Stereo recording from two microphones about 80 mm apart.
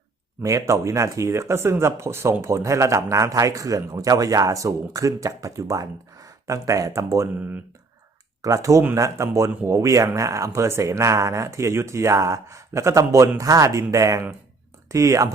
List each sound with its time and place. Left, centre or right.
0.4 s speech: right
7.3 s speech: right
8.4 s speech: right